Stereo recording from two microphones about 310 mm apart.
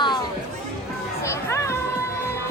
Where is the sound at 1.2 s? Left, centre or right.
Centre.